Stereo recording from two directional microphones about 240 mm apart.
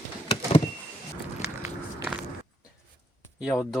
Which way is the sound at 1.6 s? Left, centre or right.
Centre.